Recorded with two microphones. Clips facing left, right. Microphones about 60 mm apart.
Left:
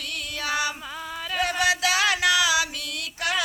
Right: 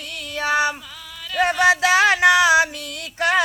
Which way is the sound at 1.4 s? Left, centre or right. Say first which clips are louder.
Right 7 dB; right.